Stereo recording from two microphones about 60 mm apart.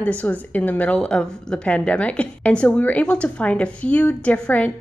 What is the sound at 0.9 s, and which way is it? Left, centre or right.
A woman's voice, centre.